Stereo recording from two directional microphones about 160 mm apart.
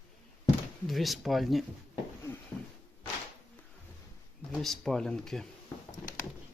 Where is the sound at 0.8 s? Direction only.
Centre (ahead or behind).